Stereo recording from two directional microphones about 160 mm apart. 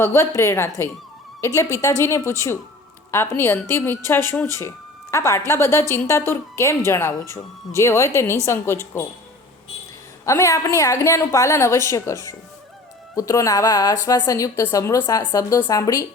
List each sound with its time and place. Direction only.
0.0 s a woman's voice: 15° left (ahead or behind)
5.1 s a woman's voice: 20° left (ahead or behind)
10.2 s a woman's voice: 20° left (ahead or behind)